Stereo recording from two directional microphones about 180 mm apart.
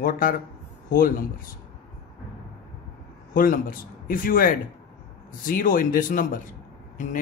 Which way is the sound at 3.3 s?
50° left (ahead or behind).